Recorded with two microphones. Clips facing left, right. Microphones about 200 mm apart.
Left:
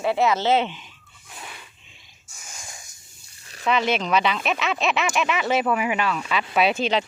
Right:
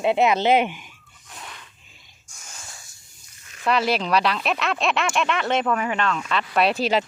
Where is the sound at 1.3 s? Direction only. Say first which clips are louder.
Even; 5° left (ahead or behind).